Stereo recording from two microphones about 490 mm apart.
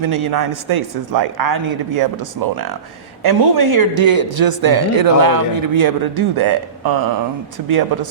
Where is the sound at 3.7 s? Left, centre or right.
Right.